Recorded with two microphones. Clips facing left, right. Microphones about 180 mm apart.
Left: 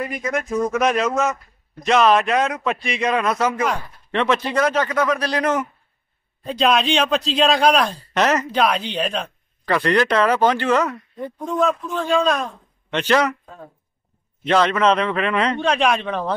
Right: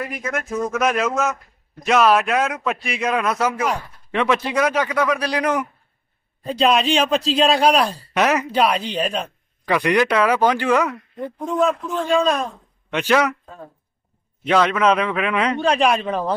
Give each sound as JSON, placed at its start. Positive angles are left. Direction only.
{"t": 0.0, "sound": "a man's voice", "side_deg": 0}
{"t": 14.4, "sound": "speech", "side_deg": -5}